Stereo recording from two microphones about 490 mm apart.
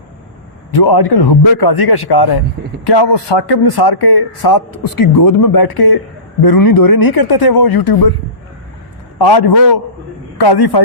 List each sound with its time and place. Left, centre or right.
0.7 s speech: left
9.1 s speech: left